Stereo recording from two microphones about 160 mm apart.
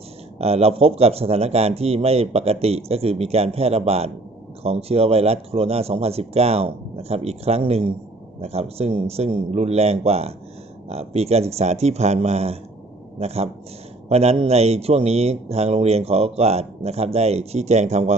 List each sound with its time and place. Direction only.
0.3 s speech: 40° right (ahead or behind)